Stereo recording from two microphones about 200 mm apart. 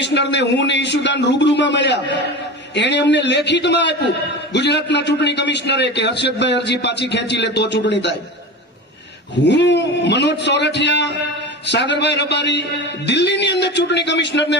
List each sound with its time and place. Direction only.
0.0 s a man's voice: 60° left (ahead or behind)
9.4 s a man's voice: 60° left (ahead or behind)